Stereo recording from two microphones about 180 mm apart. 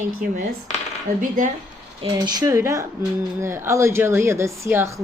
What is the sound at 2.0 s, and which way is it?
A woman's voice, 25° right (ahead or behind).